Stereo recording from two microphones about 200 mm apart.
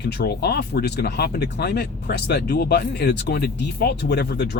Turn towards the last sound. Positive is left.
turn(degrees=55)  # may be behind; listen again after turning